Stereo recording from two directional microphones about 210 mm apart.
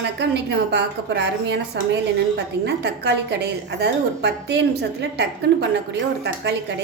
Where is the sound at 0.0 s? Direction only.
55° right (ahead or behind).